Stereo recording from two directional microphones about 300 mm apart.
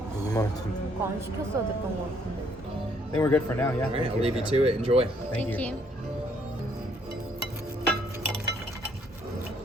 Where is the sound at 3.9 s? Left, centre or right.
Centre.